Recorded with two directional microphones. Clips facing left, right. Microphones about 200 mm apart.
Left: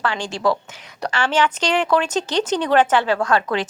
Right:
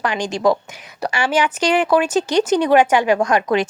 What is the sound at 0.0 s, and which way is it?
Speech, 15° right (ahead or behind).